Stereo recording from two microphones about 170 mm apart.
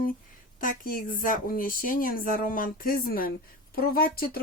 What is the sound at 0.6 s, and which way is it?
Speech, 55° left (ahead or behind).